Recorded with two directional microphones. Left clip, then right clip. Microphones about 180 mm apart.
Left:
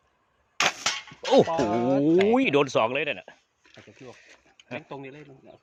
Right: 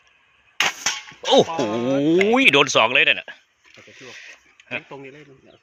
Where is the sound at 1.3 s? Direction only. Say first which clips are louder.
Right 3 dB; 10° left (ahead or behind).